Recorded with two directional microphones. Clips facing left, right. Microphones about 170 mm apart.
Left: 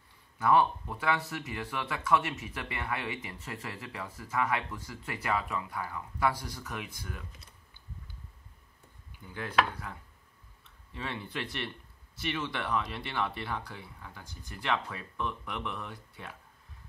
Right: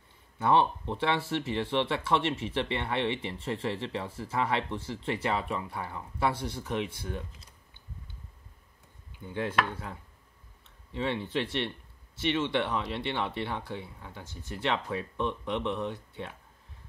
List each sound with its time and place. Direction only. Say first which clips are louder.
0.4 s speech: right 1 dB; 25° right (ahead or behind)
9.2 s speech: even; 25° right (ahead or behind)